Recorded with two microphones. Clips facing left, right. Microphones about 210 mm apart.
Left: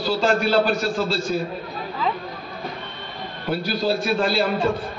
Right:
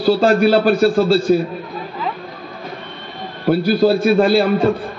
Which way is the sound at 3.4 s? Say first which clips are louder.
Right 9 dB; 50° right (ahead or behind).